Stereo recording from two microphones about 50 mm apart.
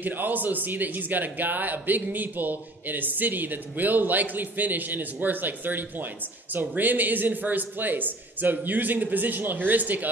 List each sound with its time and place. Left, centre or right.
0.0 s a man's voice: right